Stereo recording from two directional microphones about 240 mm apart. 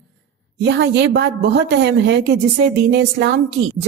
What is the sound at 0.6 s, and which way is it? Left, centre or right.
Speech, right.